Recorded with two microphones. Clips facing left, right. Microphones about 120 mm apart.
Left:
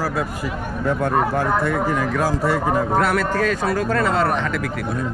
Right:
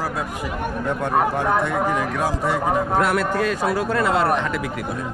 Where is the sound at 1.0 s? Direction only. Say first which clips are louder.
Right 1 dB; centre (ahead or behind).